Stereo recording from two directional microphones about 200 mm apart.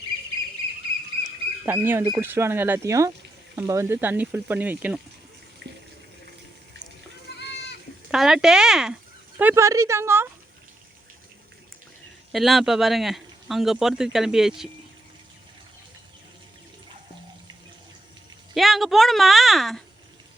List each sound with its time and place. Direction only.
1.6 s speech: 10° right (ahead or behind)
7.3 s goat: 55° left (ahead or behind)
8.1 s speech: centre (ahead or behind)
12.3 s speech: centre (ahead or behind)
18.5 s speech: centre (ahead or behind)